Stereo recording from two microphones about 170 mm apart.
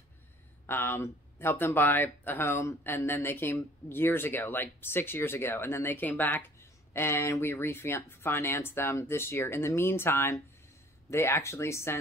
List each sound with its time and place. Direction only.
0.7 s speech: 15° left (ahead or behind)